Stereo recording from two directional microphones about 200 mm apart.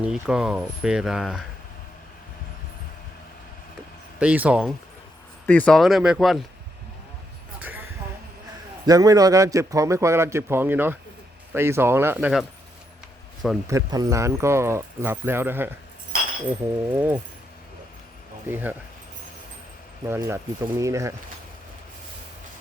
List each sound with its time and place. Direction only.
0.0 s speech: 5° right (ahead or behind)
4.2 s a man's voice: 5° right (ahead or behind)
5.5 s speech: 5° left (ahead or behind)
7.6 s a sound: 10° right (ahead or behind)
8.9 s a man's voice: 15° right (ahead or behind)
13.7 s a man's voice: 15° right (ahead or behind)
16.1 s chink: 45° right (ahead or behind)
16.9 s a man's voice: 10° right (ahead or behind)
18.4 s a man's voice: 10° right (ahead or behind)
20.1 s a man's voice: 15° right (ahead or behind)